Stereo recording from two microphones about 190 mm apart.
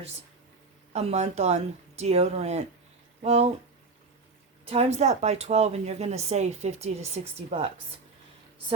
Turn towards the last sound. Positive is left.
turn(degrees=-30)  # may be behind; listen again after turning